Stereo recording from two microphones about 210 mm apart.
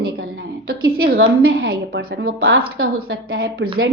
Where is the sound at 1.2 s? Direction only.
75° right (ahead or behind).